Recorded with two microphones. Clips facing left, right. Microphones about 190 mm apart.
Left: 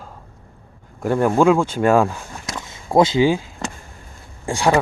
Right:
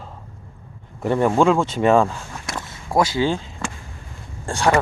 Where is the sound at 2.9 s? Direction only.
20° left (ahead or behind).